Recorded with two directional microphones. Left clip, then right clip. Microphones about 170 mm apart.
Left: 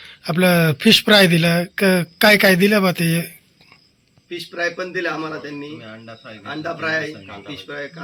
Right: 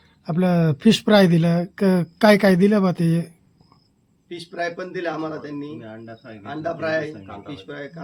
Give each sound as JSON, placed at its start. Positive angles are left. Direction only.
{"t": 0.3, "sound": "speech", "side_deg": -15}
{"t": 4.3, "sound": "a man's voice", "side_deg": -50}